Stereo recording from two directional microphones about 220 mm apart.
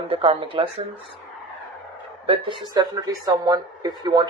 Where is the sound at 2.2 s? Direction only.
25° right (ahead or behind).